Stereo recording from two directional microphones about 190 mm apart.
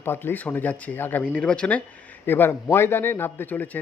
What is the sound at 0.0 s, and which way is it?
Speech, 10° left (ahead or behind).